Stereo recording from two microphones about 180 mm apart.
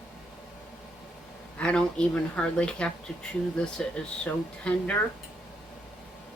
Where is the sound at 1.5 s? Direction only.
5° left (ahead or behind).